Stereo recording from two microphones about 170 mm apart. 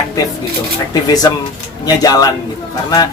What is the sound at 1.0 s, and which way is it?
Speech, 20° left (ahead or behind).